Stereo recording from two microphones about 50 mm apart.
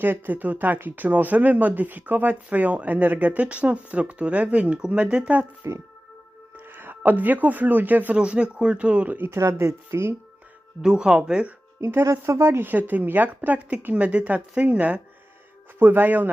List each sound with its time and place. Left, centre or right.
0.0 s speech: right
5.6 s speech: right
6.7 s speech: right
8.1 s speech: right
9.2 s speech: right
10.8 s speech: centre
11.8 s speech: right
12.2 s speech: right
12.7 s speech: right
15.8 s speech: right